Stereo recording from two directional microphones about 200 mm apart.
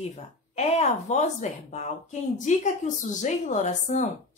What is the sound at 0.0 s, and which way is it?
A woman's voice, 35° left (ahead or behind).